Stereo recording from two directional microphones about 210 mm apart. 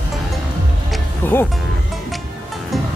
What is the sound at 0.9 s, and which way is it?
Music, 10° left (ahead or behind).